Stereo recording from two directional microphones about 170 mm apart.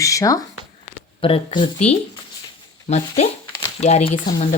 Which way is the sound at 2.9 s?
35° left (ahead or behind).